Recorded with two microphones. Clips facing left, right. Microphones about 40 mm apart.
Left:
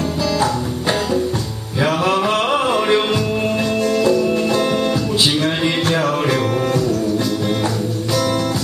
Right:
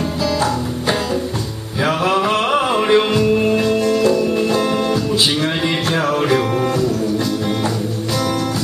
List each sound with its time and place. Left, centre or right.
1.8 s music: centre